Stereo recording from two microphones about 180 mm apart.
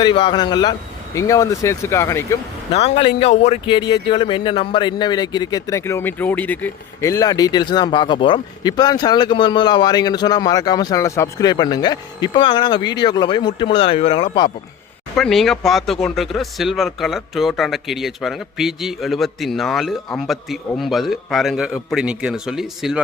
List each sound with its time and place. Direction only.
0.0 s a man's voice: 25° left (ahead or behind)
2.7 s speech: 35° left (ahead or behind)
3.8 s speech: 25° left (ahead or behind)
15.1 s speech: centre (ahead or behind)